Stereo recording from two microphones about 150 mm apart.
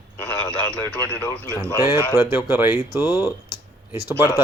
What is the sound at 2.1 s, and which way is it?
Speech, 15° right (ahead or behind).